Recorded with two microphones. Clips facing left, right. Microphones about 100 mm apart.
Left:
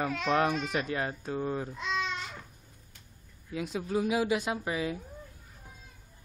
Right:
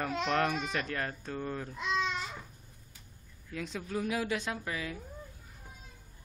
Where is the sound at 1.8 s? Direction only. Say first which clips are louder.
Right 1 dB; 5° right (ahead or behind).